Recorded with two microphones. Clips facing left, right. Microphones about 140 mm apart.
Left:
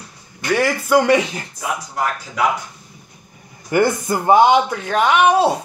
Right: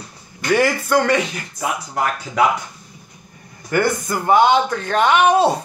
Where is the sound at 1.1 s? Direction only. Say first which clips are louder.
Left 3 dB; 25° left (ahead or behind).